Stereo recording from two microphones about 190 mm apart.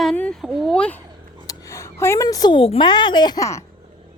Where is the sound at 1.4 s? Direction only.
15° left (ahead or behind).